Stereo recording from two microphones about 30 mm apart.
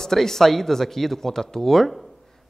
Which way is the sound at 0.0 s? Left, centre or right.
Centre.